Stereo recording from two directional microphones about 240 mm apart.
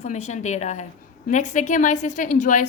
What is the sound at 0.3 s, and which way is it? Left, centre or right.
A woman's voice, left.